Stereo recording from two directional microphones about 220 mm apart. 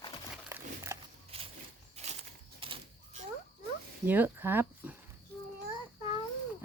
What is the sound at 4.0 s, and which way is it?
Speech, 10° right (ahead or behind).